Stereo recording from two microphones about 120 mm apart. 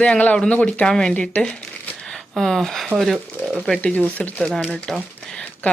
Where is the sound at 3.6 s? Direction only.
10° left (ahead or behind).